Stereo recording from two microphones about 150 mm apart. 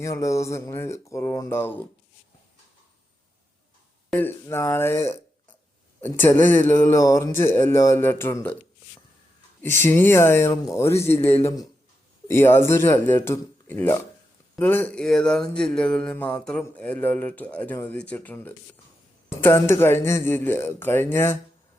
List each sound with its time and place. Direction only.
0.0 s a sound: 20° left (ahead or behind)
1.0 s speech: 20° left (ahead or behind)
4.1 s speech: 15° left (ahead or behind)
9.8 s speech: 15° left (ahead or behind)